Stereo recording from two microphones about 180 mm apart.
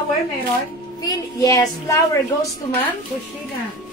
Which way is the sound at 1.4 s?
20° left (ahead or behind).